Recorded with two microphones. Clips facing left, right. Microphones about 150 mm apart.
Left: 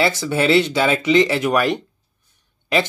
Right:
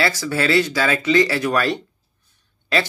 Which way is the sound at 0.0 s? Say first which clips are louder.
Left 3 dB; 25° left (ahead or behind).